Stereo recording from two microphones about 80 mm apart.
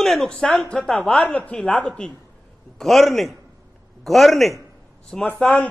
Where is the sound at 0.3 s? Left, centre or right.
Centre.